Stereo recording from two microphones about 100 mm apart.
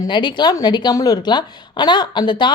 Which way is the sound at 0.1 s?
50° left (ahead or behind).